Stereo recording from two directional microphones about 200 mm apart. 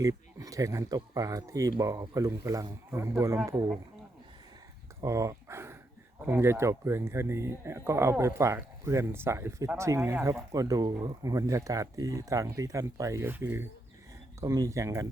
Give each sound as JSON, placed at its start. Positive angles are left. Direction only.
{"t": 0.0, "sound": "speech", "side_deg": -15}
{"t": 4.9, "sound": "a sound", "side_deg": -15}
{"t": 6.2, "sound": "speech", "side_deg": -10}